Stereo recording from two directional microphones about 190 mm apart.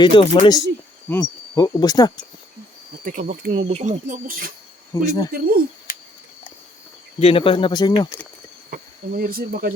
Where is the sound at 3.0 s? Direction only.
45° right (ahead or behind).